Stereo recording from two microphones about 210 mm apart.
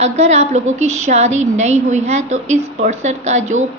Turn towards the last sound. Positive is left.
turn(degrees=-35)  # may be behind; listen again after turning